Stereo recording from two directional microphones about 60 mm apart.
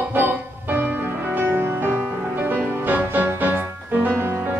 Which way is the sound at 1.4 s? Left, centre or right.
Right.